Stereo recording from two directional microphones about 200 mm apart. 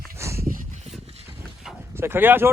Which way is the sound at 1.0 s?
30° right (ahead or behind).